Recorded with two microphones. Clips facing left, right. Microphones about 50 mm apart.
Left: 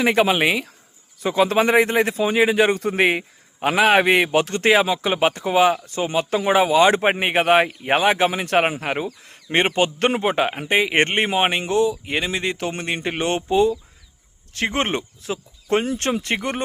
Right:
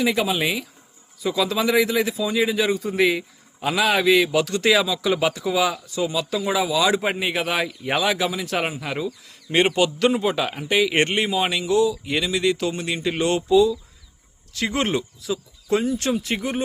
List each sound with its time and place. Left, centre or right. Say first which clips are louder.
0.0 s a man's voice: left 4 dB; left